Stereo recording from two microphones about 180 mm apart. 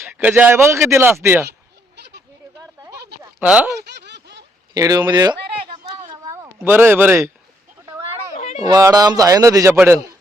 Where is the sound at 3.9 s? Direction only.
70° right (ahead or behind).